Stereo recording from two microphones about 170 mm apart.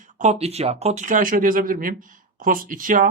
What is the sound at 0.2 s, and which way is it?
Speech, 40° right (ahead or behind).